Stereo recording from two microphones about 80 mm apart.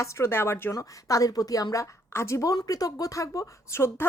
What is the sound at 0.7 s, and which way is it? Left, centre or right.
A woman's voice, left.